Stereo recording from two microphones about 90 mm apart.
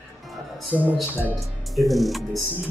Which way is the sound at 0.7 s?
5° left (ahead or behind).